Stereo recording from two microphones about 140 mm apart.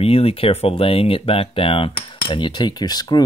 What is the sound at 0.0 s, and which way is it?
Speech, 45° left (ahead or behind).